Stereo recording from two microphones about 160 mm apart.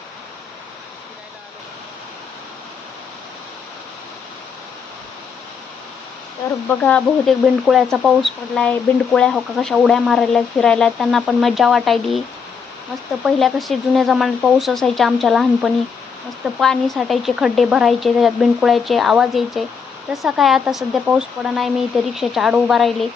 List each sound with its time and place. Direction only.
6.7 s speech: 5° left (ahead or behind)
13.2 s speech: centre (ahead or behind)